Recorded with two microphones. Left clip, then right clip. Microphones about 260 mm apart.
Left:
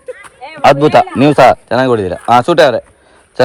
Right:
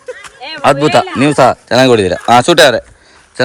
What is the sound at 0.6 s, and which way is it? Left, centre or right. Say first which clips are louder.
A man's voice: left 2 dB; centre.